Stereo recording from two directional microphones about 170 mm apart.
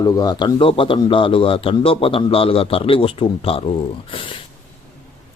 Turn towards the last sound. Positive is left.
turn(degrees=30)  # may be behind; listen again after turning